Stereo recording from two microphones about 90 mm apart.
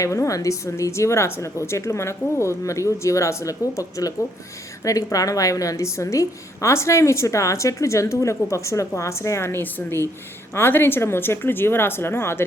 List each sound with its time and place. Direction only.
0.0 s a woman's voice: 35° left (ahead or behind)